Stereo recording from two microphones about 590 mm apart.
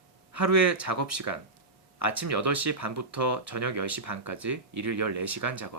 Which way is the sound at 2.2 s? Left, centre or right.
Right.